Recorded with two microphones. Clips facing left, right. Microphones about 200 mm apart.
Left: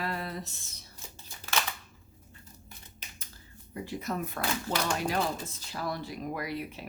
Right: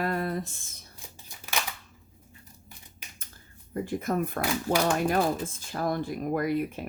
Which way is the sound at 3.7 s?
50° right (ahead or behind).